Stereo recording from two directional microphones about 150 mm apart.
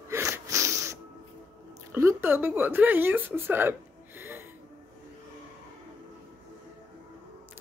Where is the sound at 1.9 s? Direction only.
15° right (ahead or behind).